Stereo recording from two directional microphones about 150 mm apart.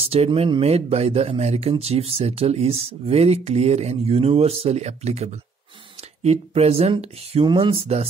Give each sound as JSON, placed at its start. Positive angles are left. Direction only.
{"t": 0.0, "sound": "speech", "side_deg": -40}